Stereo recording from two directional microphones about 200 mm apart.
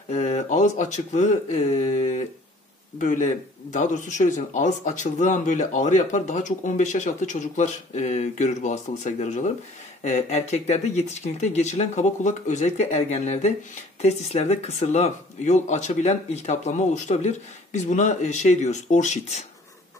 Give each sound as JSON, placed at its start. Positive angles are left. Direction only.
{"t": 0.1, "sound": "speech", "side_deg": 35}